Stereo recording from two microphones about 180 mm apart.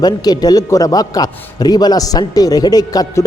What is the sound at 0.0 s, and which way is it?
A man's voice, 20° left (ahead or behind).